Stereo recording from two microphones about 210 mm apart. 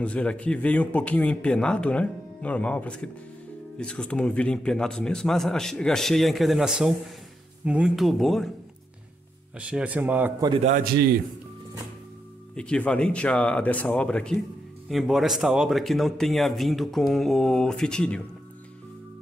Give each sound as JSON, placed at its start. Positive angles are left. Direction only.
{"t": 0.0, "sound": "a man's voice", "side_deg": 5}
{"t": 9.6, "sound": "speech", "side_deg": -5}
{"t": 10.5, "sound": "a man's voice", "side_deg": -30}
{"t": 12.5, "sound": "a man's voice", "side_deg": 5}